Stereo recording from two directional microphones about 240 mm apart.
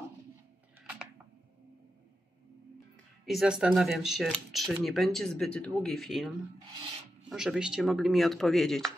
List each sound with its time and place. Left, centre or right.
3.3 s speech: centre